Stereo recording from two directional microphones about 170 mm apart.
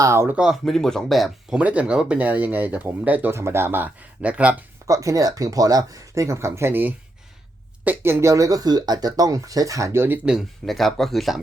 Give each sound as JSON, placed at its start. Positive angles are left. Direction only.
{"t": 0.0, "sound": "speech", "side_deg": -15}
{"t": 4.9, "sound": "speech", "side_deg": -20}